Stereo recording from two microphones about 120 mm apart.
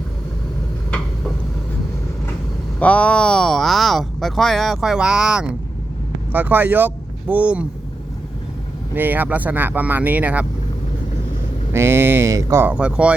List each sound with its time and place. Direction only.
2.7 s speech: 10° left (ahead or behind); by 7.7 s 10° right (ahead or behind)
9.0 s speech: 15° right (ahead or behind)
11.7 s speech: 20° right (ahead or behind)
12.7 s speech: 10° right (ahead or behind)